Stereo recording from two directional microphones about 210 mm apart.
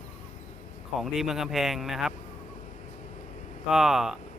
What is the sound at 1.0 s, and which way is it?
Speech, centre (ahead or behind).